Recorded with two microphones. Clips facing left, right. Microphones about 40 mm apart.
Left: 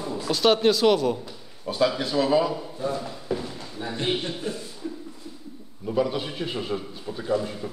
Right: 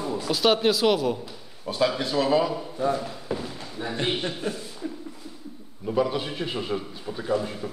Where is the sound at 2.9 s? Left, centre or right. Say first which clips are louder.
Even; centre.